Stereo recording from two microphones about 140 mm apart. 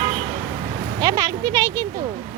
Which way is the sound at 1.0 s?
25° right (ahead or behind).